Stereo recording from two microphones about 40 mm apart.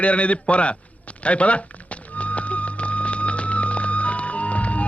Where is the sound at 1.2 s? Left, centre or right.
Left.